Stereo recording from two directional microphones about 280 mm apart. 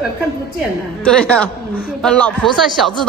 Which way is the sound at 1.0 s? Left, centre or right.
Centre.